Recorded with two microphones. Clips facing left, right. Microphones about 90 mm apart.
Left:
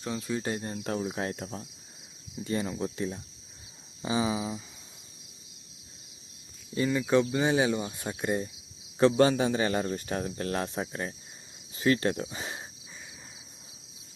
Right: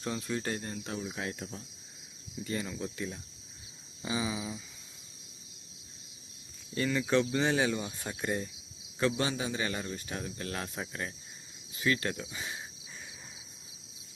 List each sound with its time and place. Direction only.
0.0 s speech: centre (ahead or behind)
0.4 s speech: 20° left (ahead or behind)
1.0 s speech: 35° left (ahead or behind)
2.4 s speech: 30° left (ahead or behind)
6.7 s speech: 10° left (ahead or behind)
9.0 s speech: 40° left (ahead or behind)